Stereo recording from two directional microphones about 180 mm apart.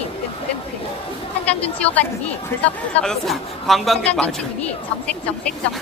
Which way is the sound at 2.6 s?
5° left (ahead or behind).